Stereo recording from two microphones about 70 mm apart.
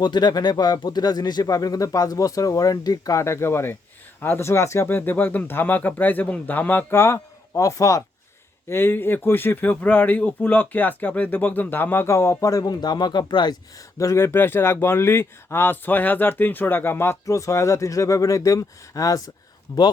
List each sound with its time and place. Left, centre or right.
0.0 s speech: left
4.9 s speech: left
8.7 s speech: left
12.0 s speech: left
14.0 s speech: left
17.2 s speech: left